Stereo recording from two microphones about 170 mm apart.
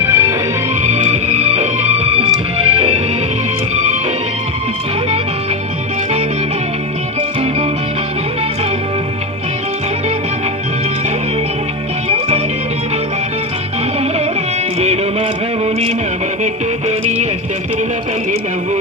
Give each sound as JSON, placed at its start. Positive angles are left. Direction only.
{"t": 0.0, "sound": "music", "side_deg": -15}
{"t": 0.8, "sound": "music", "side_deg": -45}
{"t": 7.2, "sound": "music", "side_deg": -35}
{"t": 12.0, "sound": "music", "side_deg": -40}
{"t": 15.6, "sound": "music", "side_deg": -40}